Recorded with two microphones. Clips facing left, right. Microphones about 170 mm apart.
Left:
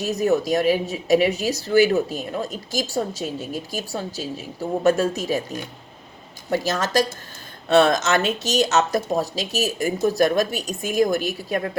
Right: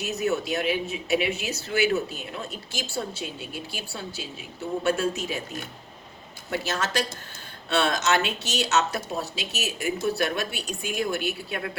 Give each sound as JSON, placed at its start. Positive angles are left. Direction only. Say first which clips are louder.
{"t": 0.0, "sound": "speech", "louder": "left 6 dB", "side_deg": 40}
{"t": 6.5, "sound": "speech", "louder": "left 6 dB", "side_deg": 40}